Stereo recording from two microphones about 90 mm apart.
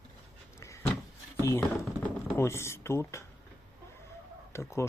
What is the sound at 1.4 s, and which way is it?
Speech, 30° left (ahead or behind).